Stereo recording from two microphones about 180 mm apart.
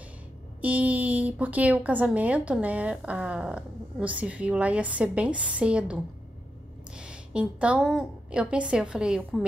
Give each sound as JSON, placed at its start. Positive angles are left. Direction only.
{"t": 0.6, "sound": "a woman's voice", "side_deg": -10}
{"t": 7.0, "sound": "a woman's voice", "side_deg": -5}